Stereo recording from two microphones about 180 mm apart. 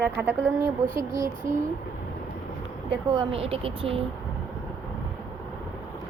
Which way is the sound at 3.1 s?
30° right (ahead or behind).